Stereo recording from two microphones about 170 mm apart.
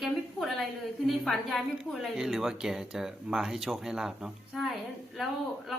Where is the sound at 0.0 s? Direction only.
Centre (ahead or behind).